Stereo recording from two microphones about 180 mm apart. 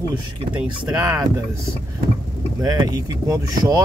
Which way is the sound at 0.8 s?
15° right (ahead or behind).